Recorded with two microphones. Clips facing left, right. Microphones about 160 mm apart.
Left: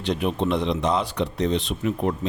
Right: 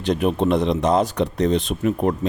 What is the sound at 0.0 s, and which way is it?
Speech, 45° right (ahead or behind).